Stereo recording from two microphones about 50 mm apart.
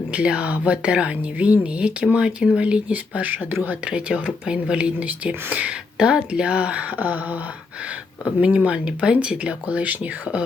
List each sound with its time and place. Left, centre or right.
0.1 s speech: right
3.8 s speech: right